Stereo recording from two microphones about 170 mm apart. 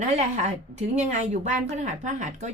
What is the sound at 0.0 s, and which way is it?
A woman's voice, 45° right (ahead or behind).